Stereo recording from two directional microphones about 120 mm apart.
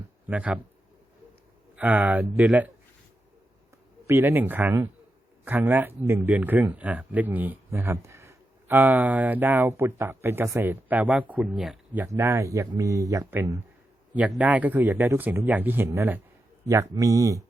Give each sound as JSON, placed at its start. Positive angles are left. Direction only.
{"t": 0.3, "sound": "speech", "side_deg": -10}
{"t": 1.7, "sound": "speech", "side_deg": -15}
{"t": 4.0, "sound": "speech", "side_deg": -20}
{"t": 12.0, "sound": "speech", "side_deg": -20}
{"t": 14.3, "sound": "speech", "side_deg": -5}